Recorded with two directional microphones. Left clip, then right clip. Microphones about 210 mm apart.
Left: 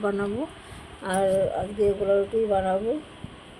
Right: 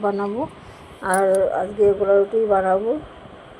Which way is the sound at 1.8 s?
25° right (ahead or behind).